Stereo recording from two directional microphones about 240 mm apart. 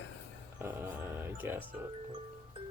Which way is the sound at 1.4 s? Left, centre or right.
Centre.